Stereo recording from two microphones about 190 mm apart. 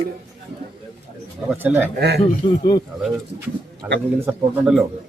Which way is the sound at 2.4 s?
25° left (ahead or behind).